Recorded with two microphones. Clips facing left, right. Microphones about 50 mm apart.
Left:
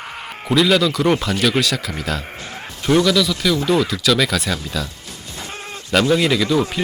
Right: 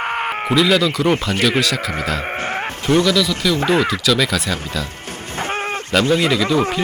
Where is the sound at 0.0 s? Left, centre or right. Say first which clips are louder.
Right 11 dB; right.